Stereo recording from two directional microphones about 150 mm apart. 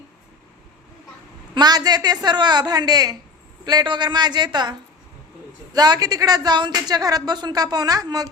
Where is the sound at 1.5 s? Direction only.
25° right (ahead or behind).